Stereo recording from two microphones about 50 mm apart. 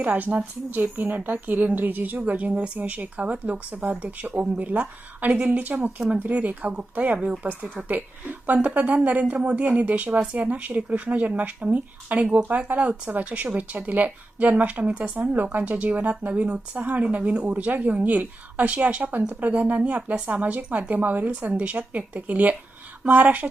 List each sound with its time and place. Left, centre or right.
0.0 s a woman's voice: right